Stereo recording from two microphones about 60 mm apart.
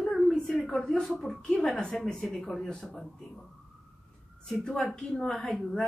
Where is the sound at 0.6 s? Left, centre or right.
Centre.